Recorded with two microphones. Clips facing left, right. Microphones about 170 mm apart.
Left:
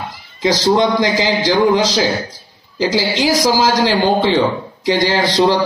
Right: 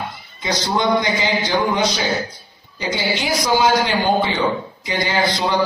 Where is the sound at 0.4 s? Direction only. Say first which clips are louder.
Left 7 dB; 90° left.